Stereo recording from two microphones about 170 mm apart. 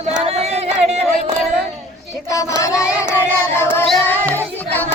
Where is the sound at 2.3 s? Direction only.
20° left (ahead or behind).